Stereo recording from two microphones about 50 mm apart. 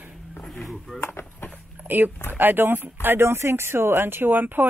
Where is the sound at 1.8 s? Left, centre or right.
Right.